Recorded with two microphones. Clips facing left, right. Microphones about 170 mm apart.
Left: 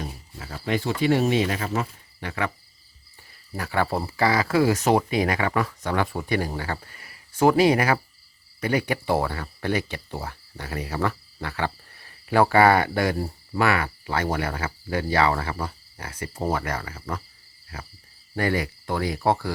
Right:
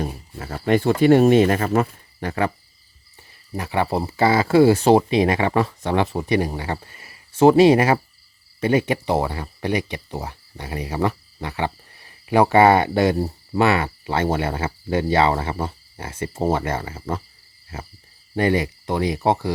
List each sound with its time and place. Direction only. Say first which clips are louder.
0.0 s speech: right 7 dB; 50° right (ahead or behind)
3.5 s speech: right 3 dB; 20° right (ahead or behind)